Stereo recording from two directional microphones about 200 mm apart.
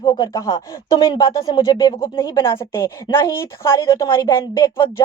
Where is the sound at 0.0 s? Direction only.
20° left (ahead or behind).